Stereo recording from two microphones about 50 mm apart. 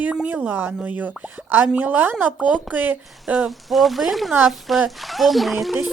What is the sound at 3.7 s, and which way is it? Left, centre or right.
Speech, centre.